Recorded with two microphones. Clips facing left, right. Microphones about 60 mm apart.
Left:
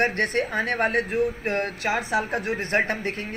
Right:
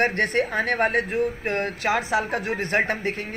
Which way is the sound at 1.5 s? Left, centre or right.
Right.